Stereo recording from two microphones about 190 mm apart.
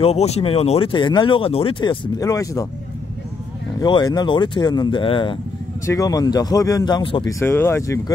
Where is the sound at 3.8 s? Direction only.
20° left (ahead or behind).